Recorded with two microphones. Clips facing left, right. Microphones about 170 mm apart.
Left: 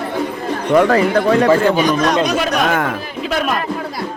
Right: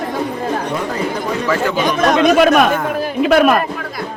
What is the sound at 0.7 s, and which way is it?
Speech, 75° left (ahead or behind).